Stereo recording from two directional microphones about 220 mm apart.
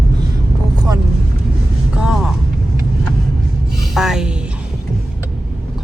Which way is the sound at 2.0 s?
Centre (ahead or behind).